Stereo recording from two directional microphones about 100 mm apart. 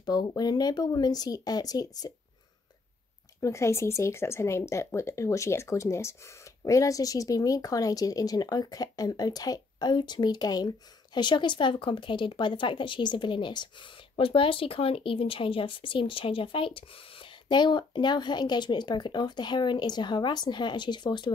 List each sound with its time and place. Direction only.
0.0 s speech: 40° left (ahead or behind)
3.3 s speech: 30° left (ahead or behind); by 13.8 s 50° left (ahead or behind)
14.1 s speech: 65° left (ahead or behind); by 21.3 s 50° left (ahead or behind)